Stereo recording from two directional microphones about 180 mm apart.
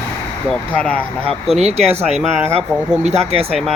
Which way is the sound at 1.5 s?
35° right (ahead or behind).